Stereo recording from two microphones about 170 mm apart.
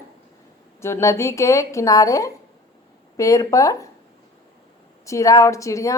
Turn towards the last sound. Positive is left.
turn(degrees=20)  # may be behind; listen again after turning